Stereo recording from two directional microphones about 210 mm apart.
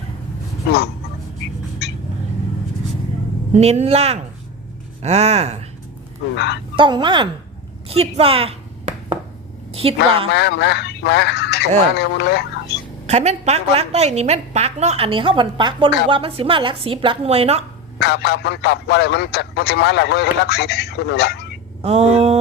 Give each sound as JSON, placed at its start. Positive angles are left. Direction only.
{"t": 3.5, "sound": "a woman's voice", "side_deg": -30}
{"t": 6.3, "sound": "speech", "side_deg": 55}
{"t": 6.7, "sound": "a woman's voice", "side_deg": -20}
{"t": 7.9, "sound": "a sound", "side_deg": -25}
{"t": 9.7, "sound": "a woman's voice", "side_deg": -25}
{"t": 10.3, "sound": "speech", "side_deg": 55}
{"t": 13.1, "sound": "a woman's voice", "side_deg": -30}
{"t": 18.0, "sound": "speech", "side_deg": 50}
{"t": 21.8, "sound": "a woman's voice", "side_deg": -30}